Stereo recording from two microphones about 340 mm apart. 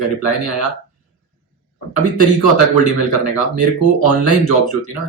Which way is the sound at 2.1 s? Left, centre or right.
Left.